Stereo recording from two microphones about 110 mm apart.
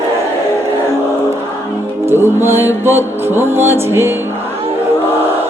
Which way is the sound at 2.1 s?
20° right (ahead or behind).